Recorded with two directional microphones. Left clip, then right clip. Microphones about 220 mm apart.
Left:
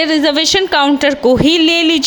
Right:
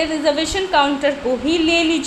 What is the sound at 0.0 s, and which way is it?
A woman's voice, 45° left (ahead or behind).